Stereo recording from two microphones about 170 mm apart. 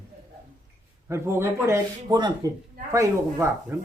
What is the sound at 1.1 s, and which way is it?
Speech, 15° right (ahead or behind).